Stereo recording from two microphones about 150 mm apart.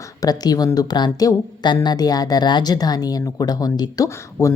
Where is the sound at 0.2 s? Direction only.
25° left (ahead or behind).